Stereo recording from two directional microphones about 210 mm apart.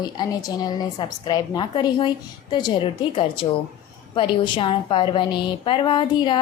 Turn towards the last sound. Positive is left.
turn(degrees=20)  # may be behind; listen again after turning